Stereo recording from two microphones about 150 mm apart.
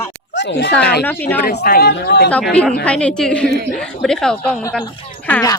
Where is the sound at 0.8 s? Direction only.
90° left.